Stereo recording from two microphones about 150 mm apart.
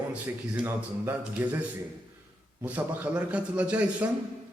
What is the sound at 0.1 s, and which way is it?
A man's voice, 10° right (ahead or behind).